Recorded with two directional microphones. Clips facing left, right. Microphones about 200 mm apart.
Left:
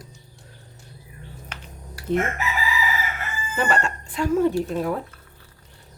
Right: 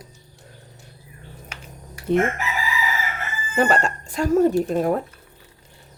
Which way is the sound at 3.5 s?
40° right (ahead or behind).